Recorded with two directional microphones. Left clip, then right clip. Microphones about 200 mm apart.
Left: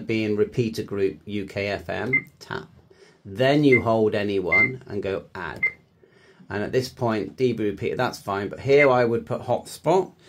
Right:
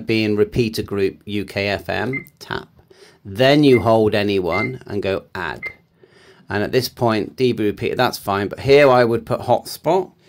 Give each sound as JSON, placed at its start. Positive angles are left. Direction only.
{"t": 0.0, "sound": "speech", "side_deg": -35}